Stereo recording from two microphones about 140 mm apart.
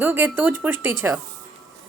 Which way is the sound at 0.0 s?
15° right (ahead or behind).